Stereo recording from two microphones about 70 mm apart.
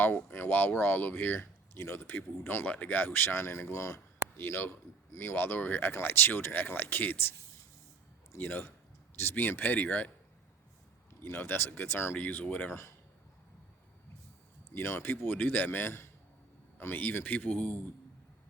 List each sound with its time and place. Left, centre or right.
0.0 s speech: left
2.6 s speech: left
4.4 s speech: left
8.4 s speech: left
11.2 s speech: left
12.1 s speech: left
14.7 s speech: left